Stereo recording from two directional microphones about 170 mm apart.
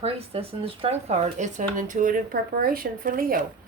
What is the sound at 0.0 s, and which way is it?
Speech, 35° right (ahead or behind).